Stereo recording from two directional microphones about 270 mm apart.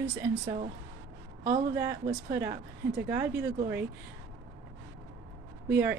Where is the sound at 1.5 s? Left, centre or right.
Centre.